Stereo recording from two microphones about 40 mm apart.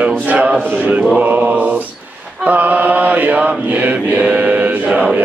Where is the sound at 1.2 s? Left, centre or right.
Right.